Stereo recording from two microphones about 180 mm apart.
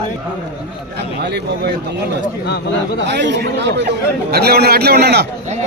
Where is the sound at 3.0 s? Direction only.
75° right (ahead or behind).